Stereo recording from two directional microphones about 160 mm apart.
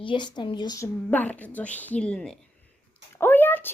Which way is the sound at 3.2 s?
15° left (ahead or behind).